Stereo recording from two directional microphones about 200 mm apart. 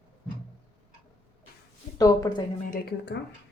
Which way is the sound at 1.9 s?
15° left (ahead or behind).